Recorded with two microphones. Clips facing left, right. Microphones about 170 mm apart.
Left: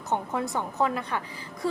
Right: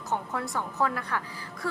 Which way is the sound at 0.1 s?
20° left (ahead or behind).